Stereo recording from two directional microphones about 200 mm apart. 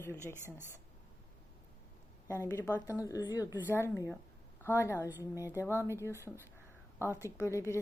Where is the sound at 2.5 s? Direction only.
10° left (ahead or behind).